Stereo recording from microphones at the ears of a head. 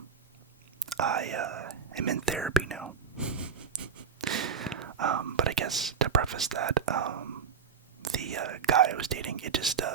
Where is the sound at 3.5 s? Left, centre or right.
Right.